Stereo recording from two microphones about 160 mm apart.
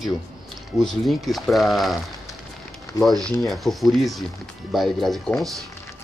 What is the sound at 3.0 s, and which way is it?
Speech, centre (ahead or behind).